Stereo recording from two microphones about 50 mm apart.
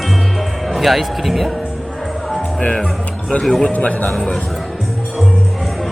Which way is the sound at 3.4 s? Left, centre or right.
Centre.